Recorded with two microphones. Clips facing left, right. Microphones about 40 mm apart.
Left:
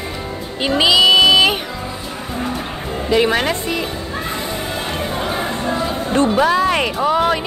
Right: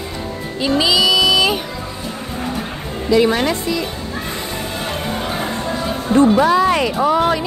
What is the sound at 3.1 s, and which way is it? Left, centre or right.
Speech, left.